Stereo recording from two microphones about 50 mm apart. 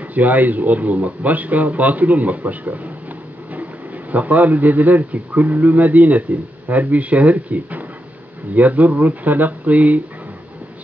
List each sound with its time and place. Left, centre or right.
0.1 s speech: right
4.1 s speech: right